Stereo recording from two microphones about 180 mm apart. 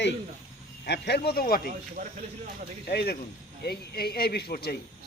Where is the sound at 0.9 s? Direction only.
65° left (ahead or behind).